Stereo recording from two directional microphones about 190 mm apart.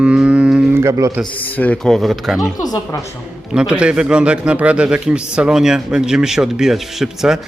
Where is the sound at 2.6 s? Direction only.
20° left (ahead or behind).